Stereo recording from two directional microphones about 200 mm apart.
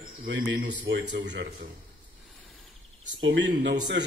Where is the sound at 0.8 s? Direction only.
70° right (ahead or behind).